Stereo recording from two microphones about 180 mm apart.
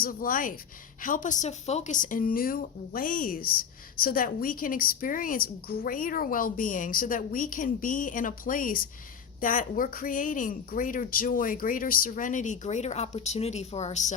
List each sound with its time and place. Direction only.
0.0 s a woman's voice: 50° left (ahead or behind)